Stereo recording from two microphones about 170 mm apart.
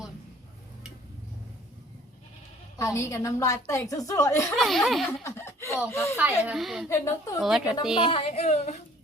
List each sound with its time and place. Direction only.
2.7 s a woman's voice: 20° left (ahead or behind)
4.5 s speech: centre (ahead or behind)
5.2 s chuckle: 15° left (ahead or behind)
5.9 s a woman's voice: 15° left (ahead or behind)
6.1 s speech: 10° right (ahead or behind)
6.8 s a woman's voice: 15° left (ahead or behind)
7.3 s speech: centre (ahead or behind)
7.9 s music: 35° left (ahead or behind)